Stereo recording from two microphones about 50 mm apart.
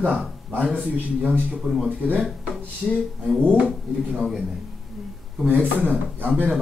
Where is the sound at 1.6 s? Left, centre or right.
Right.